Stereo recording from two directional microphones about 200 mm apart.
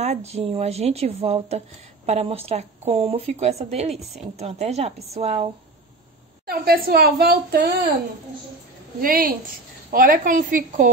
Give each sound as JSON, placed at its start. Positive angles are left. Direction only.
{"t": 0.0, "sound": "speech", "side_deg": -35}
{"t": 3.9, "sound": "a woman's voice", "side_deg": 0}
{"t": 4.4, "sound": "speech", "side_deg": -35}
{"t": 6.4, "sound": "speech", "side_deg": -50}
{"t": 9.0, "sound": "speech", "side_deg": -45}